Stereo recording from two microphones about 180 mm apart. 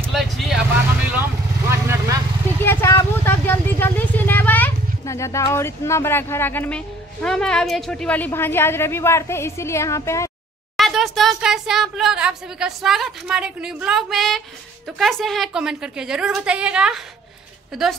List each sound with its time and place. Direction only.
0.1 s speech: centre (ahead or behind)
1.7 s vehicle: 15° right (ahead or behind)
2.6 s speech: 15° left (ahead or behind)
10.8 s a woman's voice: centre (ahead or behind)